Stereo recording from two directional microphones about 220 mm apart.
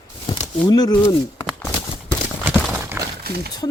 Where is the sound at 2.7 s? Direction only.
10° right (ahead or behind).